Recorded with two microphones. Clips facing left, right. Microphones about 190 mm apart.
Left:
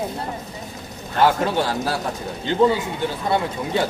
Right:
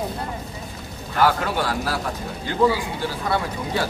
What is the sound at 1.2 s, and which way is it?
Speech, 25° left (ahead or behind).